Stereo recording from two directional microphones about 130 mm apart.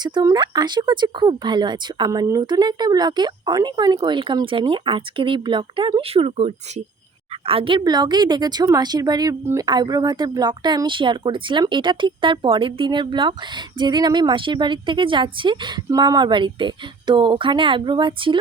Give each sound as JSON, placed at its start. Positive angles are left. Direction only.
{"t": 0.0, "sound": "speech", "side_deg": -30}
{"t": 9.4, "sound": "speech", "side_deg": -20}
{"t": 9.6, "sound": "speech", "side_deg": -35}